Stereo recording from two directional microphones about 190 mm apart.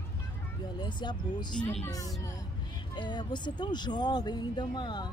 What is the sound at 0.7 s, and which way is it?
Speech, 25° left (ahead or behind).